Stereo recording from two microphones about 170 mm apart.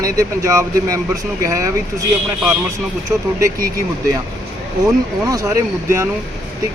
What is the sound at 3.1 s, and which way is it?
Speech, 15° right (ahead or behind).